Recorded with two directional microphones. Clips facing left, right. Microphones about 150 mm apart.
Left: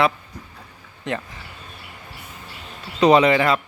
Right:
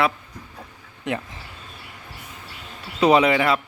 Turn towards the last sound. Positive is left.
turn(degrees=-5)  # may be behind; listen again after turning